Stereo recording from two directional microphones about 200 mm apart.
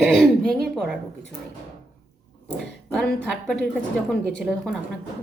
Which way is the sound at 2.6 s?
5° left (ahead or behind).